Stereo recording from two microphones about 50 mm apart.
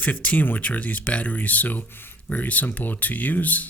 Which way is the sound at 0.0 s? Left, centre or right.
Left.